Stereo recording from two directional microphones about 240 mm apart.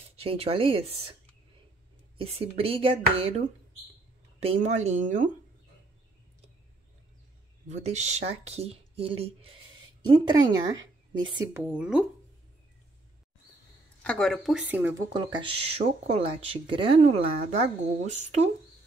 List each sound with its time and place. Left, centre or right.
0.2 s speech: right
2.1 s speech: right
7.6 s speech: right
11.6 s speech: centre
14.0 s speech: centre; by 18.5 s right